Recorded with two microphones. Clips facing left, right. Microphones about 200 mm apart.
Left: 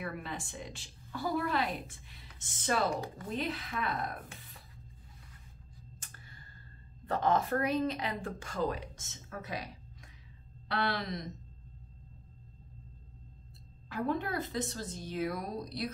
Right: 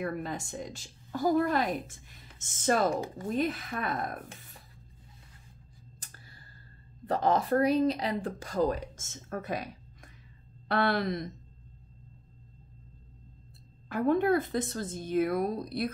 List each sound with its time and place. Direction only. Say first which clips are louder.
0.0 s a woman's voice: right 6 dB; 40° right (ahead or behind)
5.9 s a sound: even; 35° right (ahead or behind)
7.1 s speech: right 3 dB; 35° right (ahead or behind); by 9.7 s 50° right (ahead or behind)
10.7 s speech: right 6 dB; 55° right (ahead or behind)
13.8 s a woman's voice: right 8 dB; 50° right (ahead or behind)